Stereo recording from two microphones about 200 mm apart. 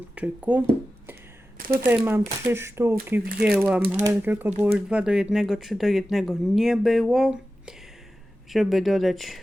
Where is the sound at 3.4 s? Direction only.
5° right (ahead or behind).